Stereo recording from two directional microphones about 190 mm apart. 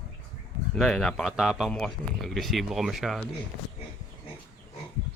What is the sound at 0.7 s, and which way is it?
Speech, 5° left (ahead or behind).